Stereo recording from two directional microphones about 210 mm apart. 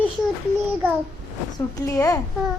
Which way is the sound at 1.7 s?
15° left (ahead or behind).